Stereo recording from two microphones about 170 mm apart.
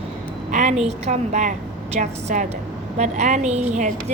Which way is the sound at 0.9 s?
45° right (ahead or behind).